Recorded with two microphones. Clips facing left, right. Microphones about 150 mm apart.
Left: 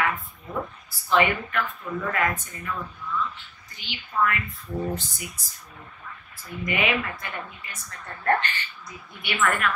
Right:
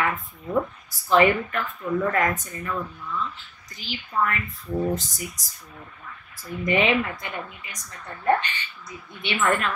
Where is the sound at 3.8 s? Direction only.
40° right (ahead or behind).